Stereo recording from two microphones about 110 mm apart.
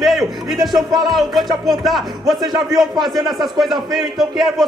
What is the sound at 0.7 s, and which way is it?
Music, 40° right (ahead or behind).